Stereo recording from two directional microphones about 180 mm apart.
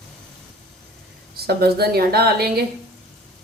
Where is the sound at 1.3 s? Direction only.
60° right (ahead or behind).